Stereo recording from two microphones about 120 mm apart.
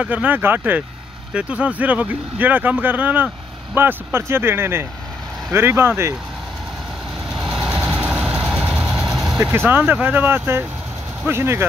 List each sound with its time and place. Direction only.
0.0 s speech: 15° right (ahead or behind)
7.3 s vehicle: 5° right (ahead or behind)
9.7 s speech: 15° right (ahead or behind)